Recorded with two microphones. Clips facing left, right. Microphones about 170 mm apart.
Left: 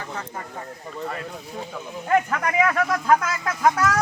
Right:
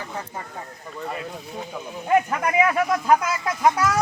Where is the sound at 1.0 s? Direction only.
5° right (ahead or behind).